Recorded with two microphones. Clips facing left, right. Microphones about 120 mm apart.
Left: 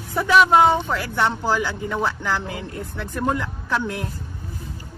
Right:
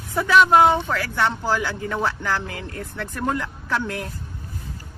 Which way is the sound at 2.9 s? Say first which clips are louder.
Left 2 dB; 5° left (ahead or behind).